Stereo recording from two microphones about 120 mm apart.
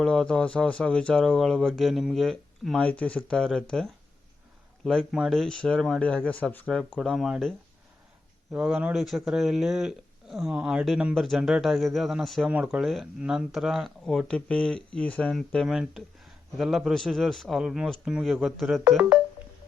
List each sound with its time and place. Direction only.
0.0 s speech: 5° left (ahead or behind)
6.9 s speech: centre (ahead or behind)
8.5 s speech: 10° right (ahead or behind)
18.9 s speech: 15° right (ahead or behind)